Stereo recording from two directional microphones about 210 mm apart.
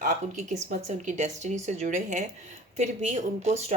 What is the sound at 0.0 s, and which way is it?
Speech, 35° right (ahead or behind).